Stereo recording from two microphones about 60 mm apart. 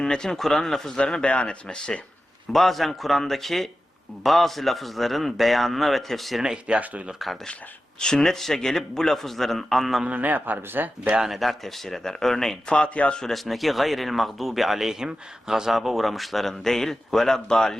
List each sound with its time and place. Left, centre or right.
0.0 s speech: centre
2.5 s speech: centre
6.4 s speech: centre
7.2 s speech: centre
7.9 s speech: centre
10.1 s speech: right
11.3 s speech: centre
13.1 s speech: centre